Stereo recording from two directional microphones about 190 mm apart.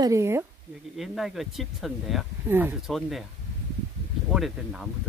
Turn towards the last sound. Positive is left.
turn(degrees=0)  # may be behind; listen again after turning